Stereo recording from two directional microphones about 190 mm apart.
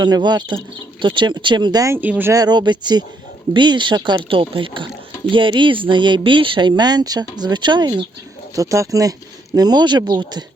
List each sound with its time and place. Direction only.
0.0 s speech: 20° right (ahead or behind)